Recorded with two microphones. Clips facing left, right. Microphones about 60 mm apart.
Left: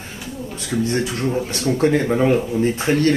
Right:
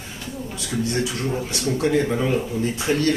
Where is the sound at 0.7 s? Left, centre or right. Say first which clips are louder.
Left 3 dB; left.